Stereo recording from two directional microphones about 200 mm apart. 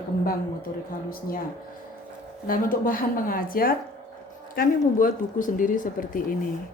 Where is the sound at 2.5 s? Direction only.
45° left (ahead or behind).